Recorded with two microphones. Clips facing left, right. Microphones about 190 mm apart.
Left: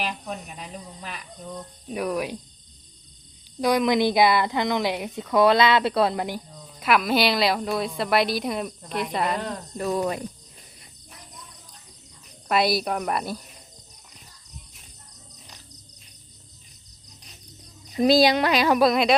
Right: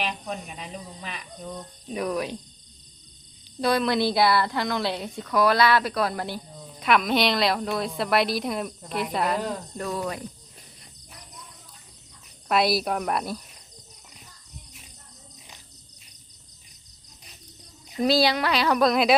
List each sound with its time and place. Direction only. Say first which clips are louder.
0.0 s a woman's voice: even; 5° left (ahead or behind)
3.6 s a woman's voice: left 2 dB; 15° left (ahead or behind)
6.7 s a woman's voice: left 1 dB; 5° left (ahead or behind)
9.7 s a woman's voice: left 8 dB; 15° left (ahead or behind)
12.5 s a woman's voice: even; centre (ahead or behind)
18.0 s a woman's voice: left 4 dB; 15° left (ahead or behind)
18.9 s a woman's voice: left 1 dB; centre (ahead or behind)